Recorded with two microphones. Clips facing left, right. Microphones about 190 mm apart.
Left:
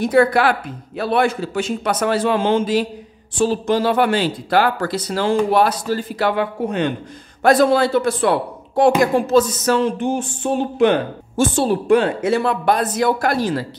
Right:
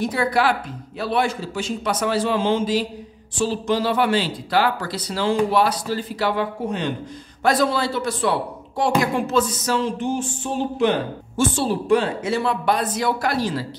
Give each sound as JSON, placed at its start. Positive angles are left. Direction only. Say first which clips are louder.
{"t": 0.0, "sound": "a man's voice", "louder": "left 6 dB", "side_deg": 55}
{"t": 9.7, "sound": "a man's voice", "louder": "left 5 dB", "side_deg": 55}